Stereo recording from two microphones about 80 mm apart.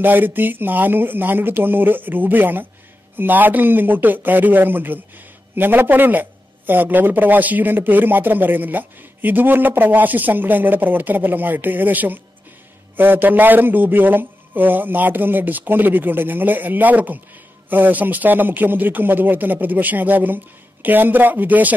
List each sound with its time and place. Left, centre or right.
0.0 s a man's voice: right